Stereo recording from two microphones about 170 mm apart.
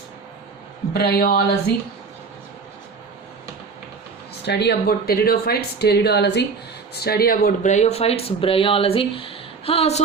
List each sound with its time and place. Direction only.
0.9 s speech: 70° left (ahead or behind)
4.4 s speech: 80° left
6.9 s speech: 70° left (ahead or behind); by 10.0 s 35° left (ahead or behind)